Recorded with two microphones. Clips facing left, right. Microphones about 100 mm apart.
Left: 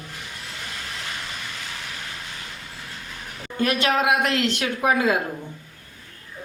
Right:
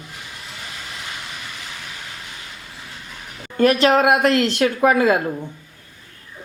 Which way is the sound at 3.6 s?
35° right (ahead or behind).